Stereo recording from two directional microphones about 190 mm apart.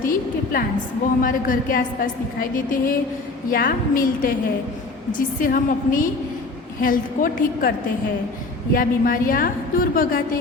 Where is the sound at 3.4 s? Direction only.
45° left (ahead or behind).